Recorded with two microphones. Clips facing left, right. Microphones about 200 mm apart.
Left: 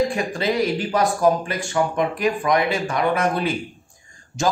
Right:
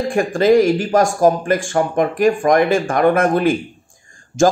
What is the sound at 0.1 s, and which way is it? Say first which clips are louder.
A man's voice: right 10 dB; 50° right (ahead or behind).